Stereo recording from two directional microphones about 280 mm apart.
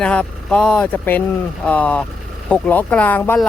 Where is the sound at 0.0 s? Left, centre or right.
Centre.